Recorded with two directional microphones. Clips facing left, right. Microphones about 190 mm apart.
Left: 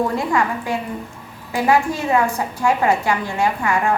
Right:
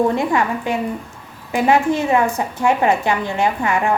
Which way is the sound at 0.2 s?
20° right (ahead or behind).